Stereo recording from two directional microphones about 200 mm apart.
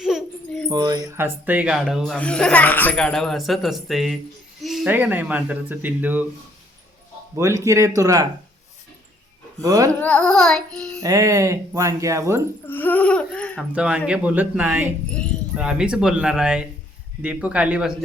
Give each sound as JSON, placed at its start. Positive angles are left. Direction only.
{"t": 0.0, "sound": "a sound", "side_deg": 0}
{"t": 0.7, "sound": "speech", "side_deg": -20}
{"t": 7.3, "sound": "speech", "side_deg": -15}
{"t": 9.6, "sound": "speech", "side_deg": -15}
{"t": 10.0, "sound": "speech", "side_deg": 5}
{"t": 11.0, "sound": "speech", "side_deg": -15}
{"t": 12.6, "sound": "speech", "side_deg": 10}
{"t": 13.7, "sound": "speech", "side_deg": -5}